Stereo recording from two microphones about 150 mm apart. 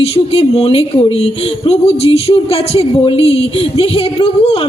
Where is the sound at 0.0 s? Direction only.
40° left (ahead or behind).